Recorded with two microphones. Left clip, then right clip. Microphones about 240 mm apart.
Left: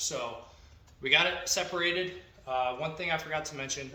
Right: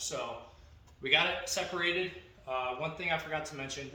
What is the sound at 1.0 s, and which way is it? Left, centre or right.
Speech, left.